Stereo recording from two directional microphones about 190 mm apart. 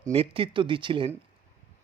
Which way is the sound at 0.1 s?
30° right (ahead or behind).